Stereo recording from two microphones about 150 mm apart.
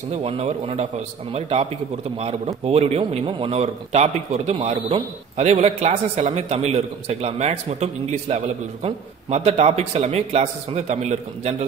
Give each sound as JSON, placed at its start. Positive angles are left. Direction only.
{"t": 0.1, "sound": "a man's voice", "side_deg": -45}